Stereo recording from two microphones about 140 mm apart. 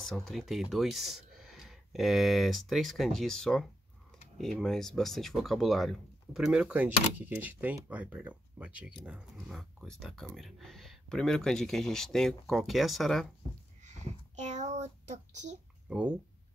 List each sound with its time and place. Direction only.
0.0 s speech: centre (ahead or behind)
13.8 s a sound: 55° right (ahead or behind)
15.9 s speech: 5° right (ahead or behind)